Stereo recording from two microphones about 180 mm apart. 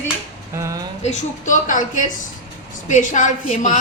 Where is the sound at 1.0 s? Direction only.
40° left (ahead or behind).